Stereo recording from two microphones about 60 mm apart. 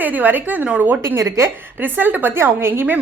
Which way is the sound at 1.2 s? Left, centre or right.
Right.